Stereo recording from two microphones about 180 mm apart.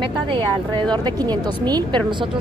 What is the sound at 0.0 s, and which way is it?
Speech, 25° right (ahead or behind).